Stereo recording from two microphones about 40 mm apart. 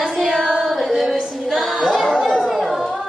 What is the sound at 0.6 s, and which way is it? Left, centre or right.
Female singing, centre.